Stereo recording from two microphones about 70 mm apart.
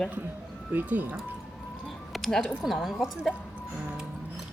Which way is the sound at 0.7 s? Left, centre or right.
Right.